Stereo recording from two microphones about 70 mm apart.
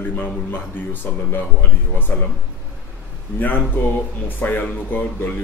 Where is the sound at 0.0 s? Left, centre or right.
Left.